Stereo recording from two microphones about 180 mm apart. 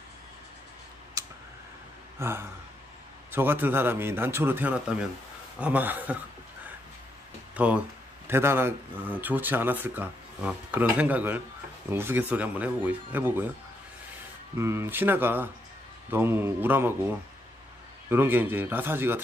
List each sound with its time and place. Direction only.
1.2 s tick: 20° right (ahead or behind)
2.1 s speech: 15° right (ahead or behind)
7.5 s speech: 10° right (ahead or behind)
14.6 s speech: 15° right (ahead or behind)
18.1 s speech: 10° right (ahead or behind)